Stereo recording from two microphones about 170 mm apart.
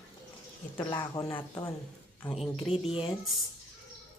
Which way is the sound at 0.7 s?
20° left (ahead or behind).